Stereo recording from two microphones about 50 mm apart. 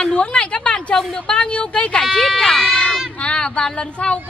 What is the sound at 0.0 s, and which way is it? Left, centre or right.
A woman's voice, centre.